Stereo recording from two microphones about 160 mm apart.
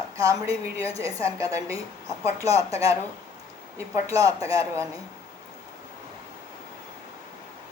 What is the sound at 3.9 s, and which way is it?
Speech, 20° right (ahead or behind).